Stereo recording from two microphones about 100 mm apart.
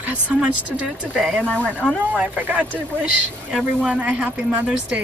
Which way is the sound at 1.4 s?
10° left (ahead or behind).